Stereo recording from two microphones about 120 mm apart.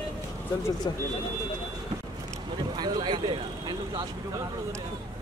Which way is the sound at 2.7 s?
35° right (ahead or behind).